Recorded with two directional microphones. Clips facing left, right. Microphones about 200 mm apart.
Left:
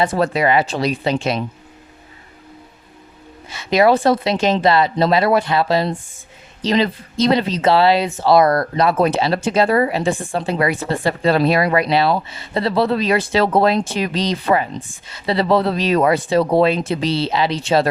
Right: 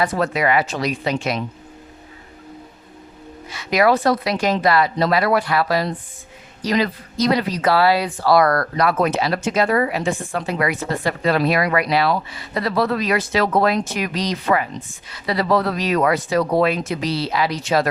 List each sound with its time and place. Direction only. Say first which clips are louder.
0.0 s speech: left 3 dB; 30° left (ahead or behind)
3.5 s speech: left 3 dB; 25° left (ahead or behind)